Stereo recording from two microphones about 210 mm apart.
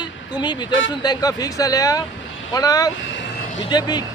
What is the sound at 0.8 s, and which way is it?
Speech, 20° left (ahead or behind).